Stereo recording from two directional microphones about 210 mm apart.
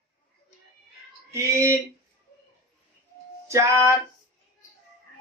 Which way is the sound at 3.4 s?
15° right (ahead or behind).